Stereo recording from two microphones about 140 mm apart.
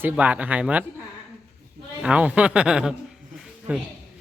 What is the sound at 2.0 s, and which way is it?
Speech, 10° right (ahead or behind).